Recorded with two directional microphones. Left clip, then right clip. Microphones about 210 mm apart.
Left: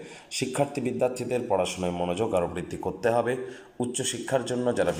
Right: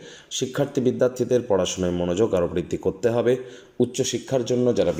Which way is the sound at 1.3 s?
25° right (ahead or behind).